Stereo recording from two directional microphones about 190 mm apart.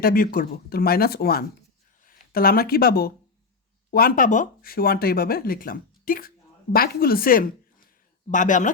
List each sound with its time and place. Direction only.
0.0 s speech: 50° left (ahead or behind)